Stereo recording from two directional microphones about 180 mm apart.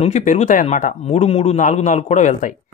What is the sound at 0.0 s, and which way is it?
A man's voice, 40° left (ahead or behind).